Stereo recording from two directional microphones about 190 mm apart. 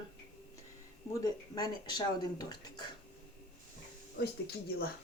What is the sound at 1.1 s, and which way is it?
Speech, 20° left (ahead or behind).